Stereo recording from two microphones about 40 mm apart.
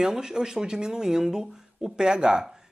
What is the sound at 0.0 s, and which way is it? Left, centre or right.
Speech, centre.